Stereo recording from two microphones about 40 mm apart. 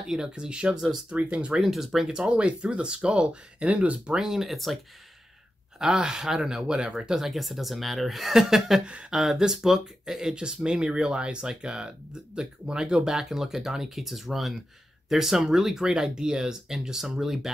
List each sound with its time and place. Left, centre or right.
0.2 s speech: right
1.6 s speech: centre
2.2 s speech: right
4.2 s speech: centre
5.8 s speech: centre
7.2 s speech: centre